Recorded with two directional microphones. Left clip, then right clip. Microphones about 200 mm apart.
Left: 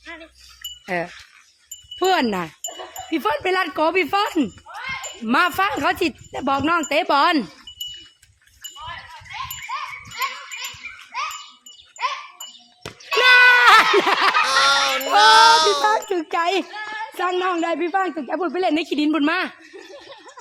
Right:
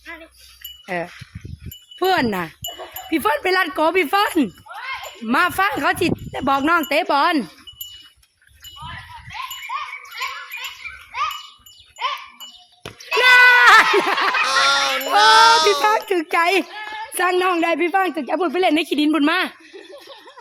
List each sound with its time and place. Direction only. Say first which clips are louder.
0.9 s speech: left 1 dB; 15° left (ahead or behind)
2.0 s speech: right 1 dB; 5° left (ahead or behind)
3.1 s speech: right 2 dB; 10° right (ahead or behind)
5.2 s speech: right 1 dB; 5° left (ahead or behind)
12.8 s a sound: right 1 dB; centre (ahead or behind)
14.3 s honk: even; centre (ahead or behind)
16.0 s a sound: right 3 dB; 15° right (ahead or behind)
16.7 s a sound: left 1 dB; 10° left (ahead or behind)
17.2 s speech: right 4 dB; 20° right (ahead or behind)